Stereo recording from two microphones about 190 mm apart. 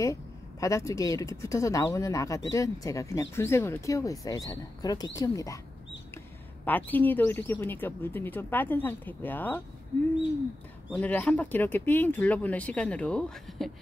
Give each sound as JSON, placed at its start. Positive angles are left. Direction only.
{"t": 0.0, "sound": "speech", "side_deg": 15}
{"t": 11.0, "sound": "speech", "side_deg": 5}